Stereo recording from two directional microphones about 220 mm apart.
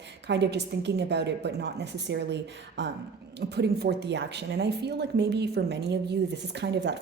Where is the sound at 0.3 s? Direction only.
50° right (ahead or behind).